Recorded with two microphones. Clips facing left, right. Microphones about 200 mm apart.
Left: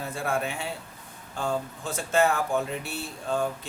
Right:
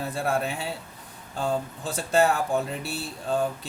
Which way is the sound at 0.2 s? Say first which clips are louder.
Right 2 dB; 35° right (ahead or behind).